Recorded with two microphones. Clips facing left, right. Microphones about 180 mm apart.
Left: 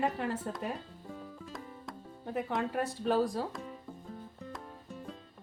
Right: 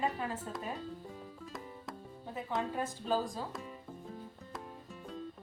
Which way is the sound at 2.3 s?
65° left (ahead or behind).